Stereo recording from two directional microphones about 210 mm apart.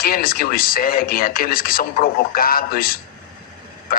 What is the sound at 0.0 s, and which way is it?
A man's voice, 45° left (ahead or behind).